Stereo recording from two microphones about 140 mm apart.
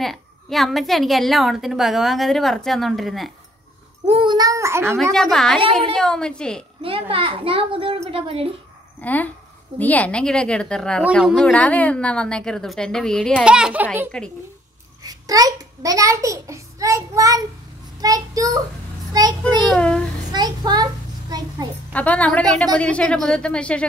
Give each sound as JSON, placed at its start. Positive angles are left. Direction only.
{"t": 0.0, "sound": "a woman's voice", "side_deg": 0}
{"t": 4.0, "sound": "a child's voice", "side_deg": -40}
{"t": 5.1, "sound": "a woman's voice", "side_deg": 5}
{"t": 6.8, "sound": "a child's voice", "side_deg": -40}
{"t": 9.0, "sound": "a woman's voice", "side_deg": 10}
{"t": 13.3, "sound": "a child's voice", "side_deg": -5}
{"t": 14.1, "sound": "a woman's voice", "side_deg": 5}
{"t": 15.0, "sound": "a child's voice", "side_deg": -25}
{"t": 19.6, "sound": "a woman's voice", "side_deg": 5}
{"t": 20.3, "sound": "a child's voice", "side_deg": -30}
{"t": 21.9, "sound": "a woman's voice", "side_deg": 10}